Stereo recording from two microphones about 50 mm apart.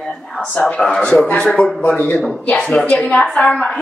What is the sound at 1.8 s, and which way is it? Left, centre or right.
Speech, left.